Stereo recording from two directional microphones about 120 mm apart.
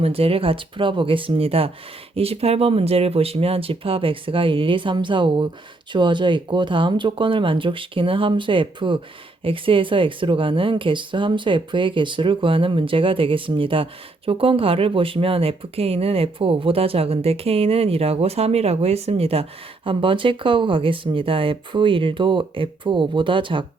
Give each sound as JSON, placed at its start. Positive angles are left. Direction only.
{"t": 0.0, "sound": "speech", "side_deg": -55}